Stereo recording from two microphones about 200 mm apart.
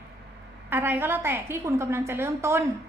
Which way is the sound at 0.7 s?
10° right (ahead or behind).